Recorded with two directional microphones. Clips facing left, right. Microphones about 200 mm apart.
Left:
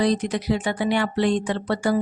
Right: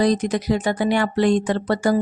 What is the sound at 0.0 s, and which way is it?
Speech, 45° right (ahead or behind).